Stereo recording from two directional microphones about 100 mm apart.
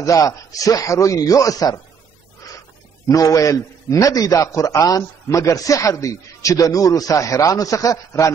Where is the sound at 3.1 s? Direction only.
35° left (ahead or behind).